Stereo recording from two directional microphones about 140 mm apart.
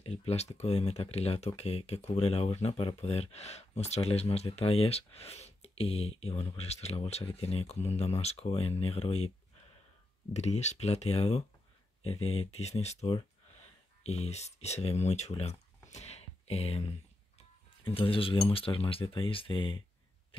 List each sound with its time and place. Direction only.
0.0 s speech: 45° left (ahead or behind)
10.3 s speech: 55° left (ahead or behind)
15.9 s a sound: 50° left (ahead or behind)
17.4 s music: 40° left (ahead or behind)
18.5 s speech: 40° left (ahead or behind)